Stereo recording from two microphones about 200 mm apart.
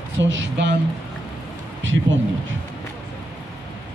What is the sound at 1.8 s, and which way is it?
Speech, 70° right (ahead or behind).